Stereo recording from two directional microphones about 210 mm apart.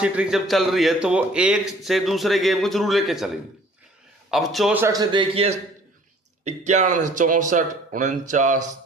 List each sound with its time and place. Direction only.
0.0 s a man's voice: 5° right (ahead or behind)
4.3 s a man's voice: centre (ahead or behind); by 8.6 s 35° right (ahead or behind)